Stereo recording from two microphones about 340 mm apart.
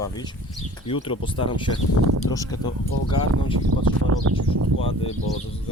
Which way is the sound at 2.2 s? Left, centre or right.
Left.